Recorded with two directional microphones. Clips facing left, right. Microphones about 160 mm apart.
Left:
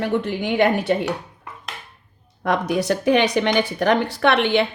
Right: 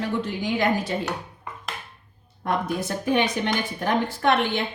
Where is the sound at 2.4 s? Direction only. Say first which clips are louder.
Left 5 dB; 80° left.